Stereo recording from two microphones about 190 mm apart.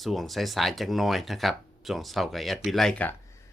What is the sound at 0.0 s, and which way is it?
Speech, centre (ahead or behind).